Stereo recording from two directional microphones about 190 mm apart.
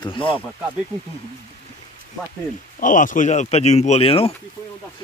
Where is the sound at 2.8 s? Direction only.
45° left (ahead or behind).